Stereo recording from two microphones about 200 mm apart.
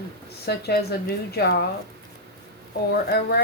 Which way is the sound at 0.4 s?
55° left (ahead or behind).